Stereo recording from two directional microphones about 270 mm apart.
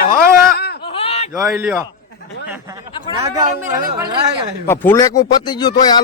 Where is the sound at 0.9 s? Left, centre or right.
Left.